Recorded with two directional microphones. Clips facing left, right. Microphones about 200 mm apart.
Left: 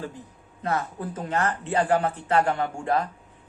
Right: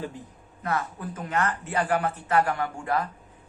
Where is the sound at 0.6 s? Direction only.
30° left (ahead or behind).